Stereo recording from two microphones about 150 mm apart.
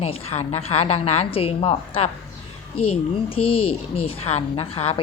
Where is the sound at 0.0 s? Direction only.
40° left (ahead or behind).